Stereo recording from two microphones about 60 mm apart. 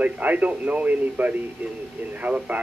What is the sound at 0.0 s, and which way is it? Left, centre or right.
A man's voice, right.